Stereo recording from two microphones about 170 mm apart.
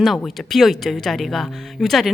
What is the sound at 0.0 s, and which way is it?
Speech, centre (ahead or behind).